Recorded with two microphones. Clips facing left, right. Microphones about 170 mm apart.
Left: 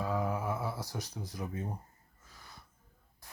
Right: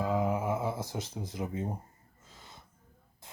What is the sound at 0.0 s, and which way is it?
Music, 20° right (ahead or behind).